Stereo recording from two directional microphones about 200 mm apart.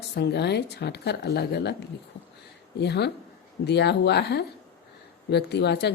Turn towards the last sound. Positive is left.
turn(degrees=55)  # may be behind; listen again after turning